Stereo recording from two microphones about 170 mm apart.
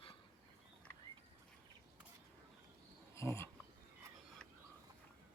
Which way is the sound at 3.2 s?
15° left (ahead or behind).